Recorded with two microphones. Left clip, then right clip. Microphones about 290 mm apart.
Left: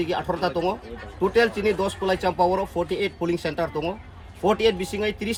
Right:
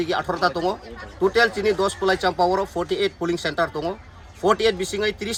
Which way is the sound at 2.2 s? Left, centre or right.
Centre.